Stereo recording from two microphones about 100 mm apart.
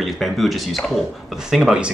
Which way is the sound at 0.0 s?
Centre (ahead or behind).